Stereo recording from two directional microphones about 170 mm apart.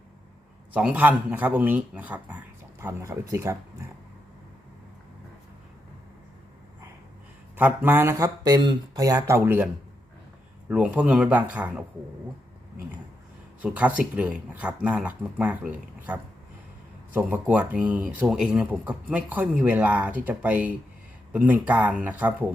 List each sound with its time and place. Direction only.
0.7 s a man's voice: 10° right (ahead or behind)
7.5 s a man's voice: 10° right (ahead or behind)
10.7 s a man's voice: 5° right (ahead or behind)
13.6 s a man's voice: 10° right (ahead or behind)